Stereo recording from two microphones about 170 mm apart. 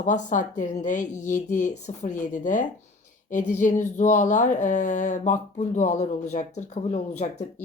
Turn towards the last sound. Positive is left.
turn(degrees=40)  # may be behind; listen again after turning